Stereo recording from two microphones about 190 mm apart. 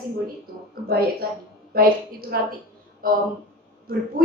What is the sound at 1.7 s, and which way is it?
Speech, 50° right (ahead or behind).